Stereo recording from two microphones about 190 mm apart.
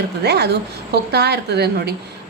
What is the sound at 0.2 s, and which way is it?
A woman's voice, 60° right (ahead or behind).